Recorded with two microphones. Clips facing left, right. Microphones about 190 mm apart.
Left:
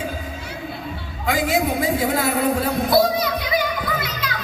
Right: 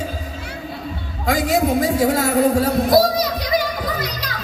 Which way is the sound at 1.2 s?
40° right (ahead or behind).